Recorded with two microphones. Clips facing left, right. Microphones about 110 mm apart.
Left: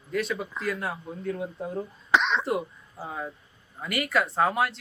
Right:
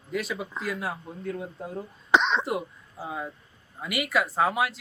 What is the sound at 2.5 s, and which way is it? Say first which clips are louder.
A man's voice: left 2 dB; centre (ahead or behind).